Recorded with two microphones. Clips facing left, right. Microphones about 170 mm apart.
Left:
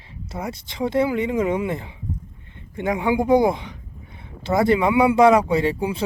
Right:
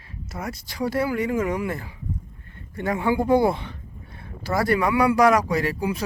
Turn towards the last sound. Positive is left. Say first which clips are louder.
# left 3 dB
turn(degrees=25)  # may be behind; listen again after turning